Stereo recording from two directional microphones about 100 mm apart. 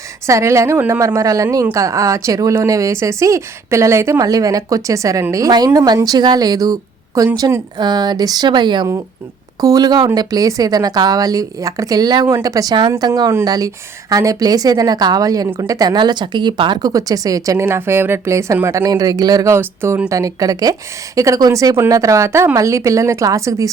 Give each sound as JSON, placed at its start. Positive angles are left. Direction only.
{"t": 0.3, "sound": "a woman's voice", "side_deg": -30}
{"t": 18.9, "sound": "a woman's voice", "side_deg": -40}
{"t": 19.5, "sound": "a woman's voice", "side_deg": -25}